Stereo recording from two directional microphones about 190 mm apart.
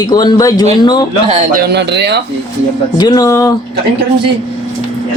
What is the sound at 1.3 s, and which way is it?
Speech, 50° right (ahead or behind).